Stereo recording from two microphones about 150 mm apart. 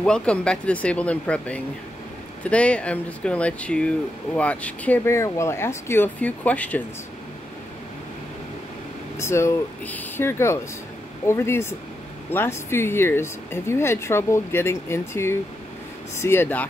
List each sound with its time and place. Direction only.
0.0 s speech: 5° left (ahead or behind)
9.1 s speech: 20° left (ahead or behind)